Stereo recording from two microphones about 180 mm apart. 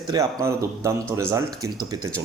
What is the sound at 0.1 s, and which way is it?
Speech, 20° right (ahead or behind).